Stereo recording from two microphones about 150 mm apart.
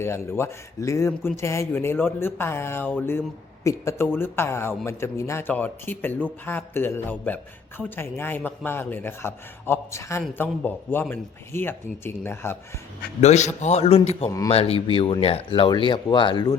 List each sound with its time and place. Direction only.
0.0 s a man's voice: 15° left (ahead or behind)
13.2 s a man's voice: 50° left (ahead or behind)
14.3 s speech: 25° left (ahead or behind)
14.5 s speech: 40° left (ahead or behind)